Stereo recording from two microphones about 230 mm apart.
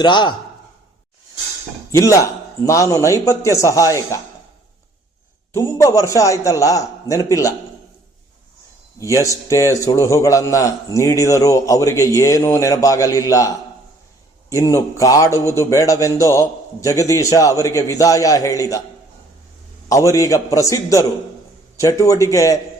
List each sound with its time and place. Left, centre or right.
0.0 s a man's voice: centre
1.9 s a man's voice: centre
5.5 s a man's voice: centre
9.0 s a man's voice: centre
14.5 s a man's voice: centre
19.9 s a man's voice: centre